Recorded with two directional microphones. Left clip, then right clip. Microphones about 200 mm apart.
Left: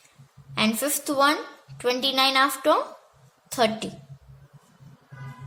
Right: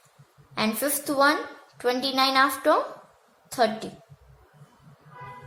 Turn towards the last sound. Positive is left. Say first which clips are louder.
# left 1 dB
turn(degrees=40)  # may be behind; listen again after turning